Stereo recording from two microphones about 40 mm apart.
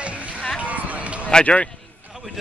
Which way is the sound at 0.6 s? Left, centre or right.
Right.